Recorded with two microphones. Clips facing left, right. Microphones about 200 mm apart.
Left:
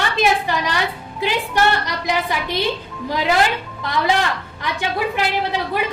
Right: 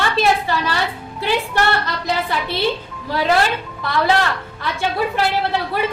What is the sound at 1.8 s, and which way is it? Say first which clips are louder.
Child singing: even; 15° left (ahead or behind).